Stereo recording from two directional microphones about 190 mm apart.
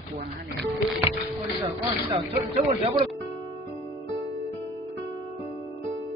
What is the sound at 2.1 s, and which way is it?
Speech, 30° right (ahead or behind).